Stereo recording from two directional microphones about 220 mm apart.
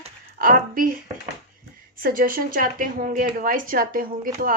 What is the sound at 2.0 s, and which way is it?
Speech, 40° right (ahead or behind).